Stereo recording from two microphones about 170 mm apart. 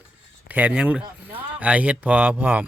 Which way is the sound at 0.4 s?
10° right (ahead or behind).